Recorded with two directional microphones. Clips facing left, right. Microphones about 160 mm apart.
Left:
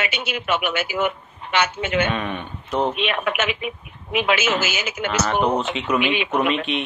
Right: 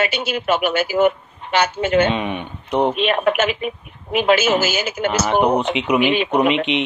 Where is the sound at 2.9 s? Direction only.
35° right (ahead or behind).